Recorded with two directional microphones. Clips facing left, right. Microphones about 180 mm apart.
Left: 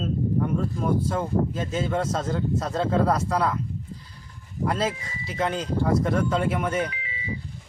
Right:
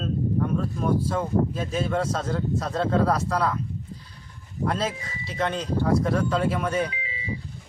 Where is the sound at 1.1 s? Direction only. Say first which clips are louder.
Right 1 dB; 5° left (ahead or behind).